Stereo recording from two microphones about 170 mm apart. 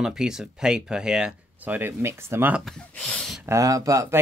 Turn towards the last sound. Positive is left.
turn(degrees=-20)  # may be behind; listen again after turning